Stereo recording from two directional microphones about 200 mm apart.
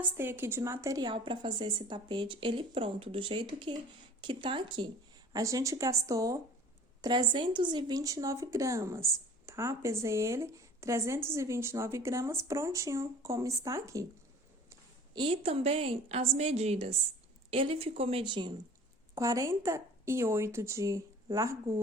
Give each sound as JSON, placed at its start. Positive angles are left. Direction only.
{"t": 0.2, "sound": "a woman's voice", "side_deg": -10}